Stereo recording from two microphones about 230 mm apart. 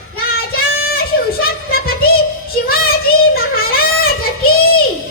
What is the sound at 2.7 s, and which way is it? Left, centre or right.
Child singing, left.